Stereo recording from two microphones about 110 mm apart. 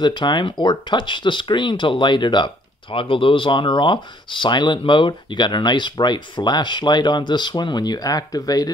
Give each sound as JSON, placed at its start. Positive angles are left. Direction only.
{"t": 0.0, "sound": "speech", "side_deg": 45}